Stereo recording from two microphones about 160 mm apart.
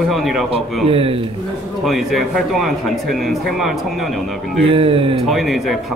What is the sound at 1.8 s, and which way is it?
Speech, centre (ahead or behind).